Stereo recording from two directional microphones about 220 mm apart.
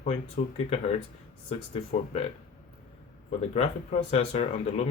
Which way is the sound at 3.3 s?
30° left (ahead or behind).